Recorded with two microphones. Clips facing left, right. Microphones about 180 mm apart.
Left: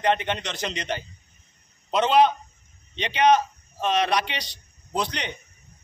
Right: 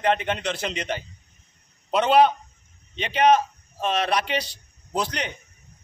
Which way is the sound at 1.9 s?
5° right (ahead or behind).